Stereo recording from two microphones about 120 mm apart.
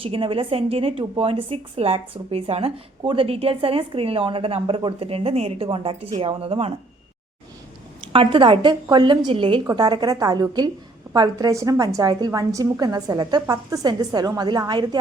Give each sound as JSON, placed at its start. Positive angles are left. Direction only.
{"t": 0.0, "sound": "speech", "side_deg": -50}
{"t": 5.6, "sound": "speech", "side_deg": -50}
{"t": 8.1, "sound": "speech", "side_deg": -45}
{"t": 9.6, "sound": "a woman's voice", "side_deg": -35}